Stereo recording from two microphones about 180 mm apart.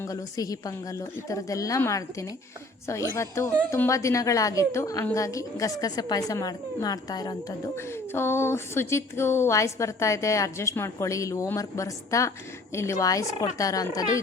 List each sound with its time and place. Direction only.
0.0 s a woman's voice: 20° left (ahead or behind)